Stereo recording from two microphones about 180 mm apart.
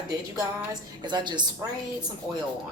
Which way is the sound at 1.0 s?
25° right (ahead or behind).